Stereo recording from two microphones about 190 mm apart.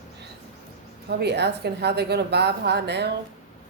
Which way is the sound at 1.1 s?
60° right (ahead or behind).